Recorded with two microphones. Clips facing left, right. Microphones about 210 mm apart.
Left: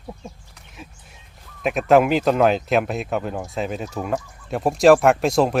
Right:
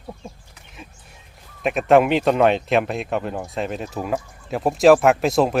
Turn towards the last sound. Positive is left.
turn(degrees=0)  # may be behind; listen again after turning